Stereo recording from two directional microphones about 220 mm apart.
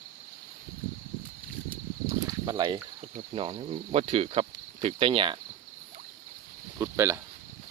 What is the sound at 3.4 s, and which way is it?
Speech, 25° right (ahead or behind).